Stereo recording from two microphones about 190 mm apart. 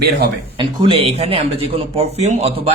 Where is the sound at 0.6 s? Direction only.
25° right (ahead or behind).